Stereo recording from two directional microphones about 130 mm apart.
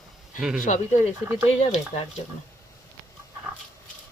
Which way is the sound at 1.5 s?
55° left (ahead or behind).